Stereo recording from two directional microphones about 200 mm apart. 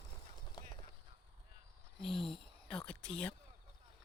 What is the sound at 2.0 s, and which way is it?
Speech, centre (ahead or behind).